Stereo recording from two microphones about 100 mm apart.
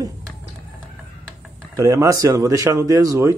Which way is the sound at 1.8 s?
30° right (ahead or behind).